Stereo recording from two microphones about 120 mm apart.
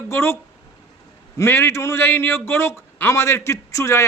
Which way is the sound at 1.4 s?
20° left (ahead or behind).